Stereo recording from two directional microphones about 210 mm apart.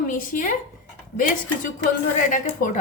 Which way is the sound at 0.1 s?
40° left (ahead or behind).